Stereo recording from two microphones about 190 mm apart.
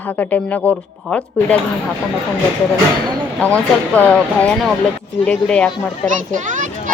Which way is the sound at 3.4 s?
10° left (ahead or behind).